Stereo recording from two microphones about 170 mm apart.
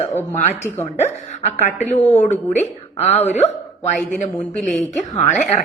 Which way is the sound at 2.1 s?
45° left (ahead or behind).